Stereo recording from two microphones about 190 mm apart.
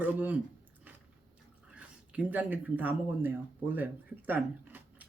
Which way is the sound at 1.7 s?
5° right (ahead or behind).